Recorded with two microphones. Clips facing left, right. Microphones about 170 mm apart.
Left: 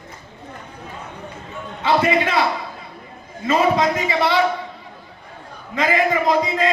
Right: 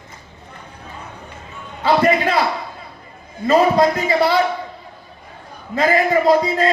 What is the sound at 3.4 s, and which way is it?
Speech, 40° right (ahead or behind).